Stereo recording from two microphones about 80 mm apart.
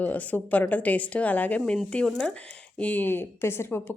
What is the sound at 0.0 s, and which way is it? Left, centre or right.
A woman's voice, centre.